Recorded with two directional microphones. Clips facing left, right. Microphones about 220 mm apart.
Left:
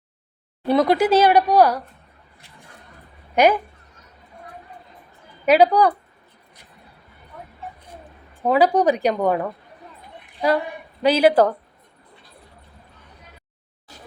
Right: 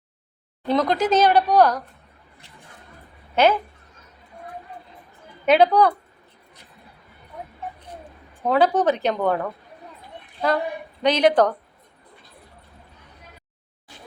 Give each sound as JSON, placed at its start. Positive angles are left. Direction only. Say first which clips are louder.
{"t": 0.7, "sound": "a woman's voice", "louder": "left 3 dB", "side_deg": 10}
{"t": 3.3, "sound": "a woman's voice", "louder": "left 2 dB", "side_deg": 15}
{"t": 5.5, "sound": "a woman's voice", "louder": "left 1 dB", "side_deg": 10}
{"t": 8.4, "sound": "a woman's voice", "louder": "left 2 dB", "side_deg": 10}
{"t": 11.0, "sound": "a woman's voice", "louder": "left 2 dB", "side_deg": 5}